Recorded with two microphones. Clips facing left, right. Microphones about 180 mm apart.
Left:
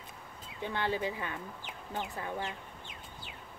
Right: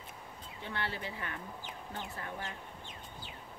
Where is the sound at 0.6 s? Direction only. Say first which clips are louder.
Left 7 dB; 15° left (ahead or behind).